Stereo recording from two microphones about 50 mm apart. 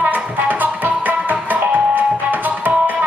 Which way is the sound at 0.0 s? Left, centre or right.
Right.